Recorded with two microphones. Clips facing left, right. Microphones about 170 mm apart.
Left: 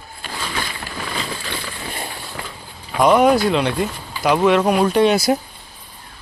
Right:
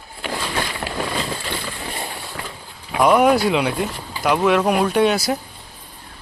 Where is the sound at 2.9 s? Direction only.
5° right (ahead or behind).